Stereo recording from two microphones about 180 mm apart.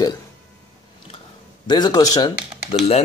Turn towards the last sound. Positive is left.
turn(degrees=35)  # may be behind; listen again after turning